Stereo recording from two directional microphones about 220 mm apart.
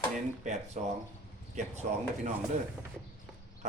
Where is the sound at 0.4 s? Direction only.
30° right (ahead or behind).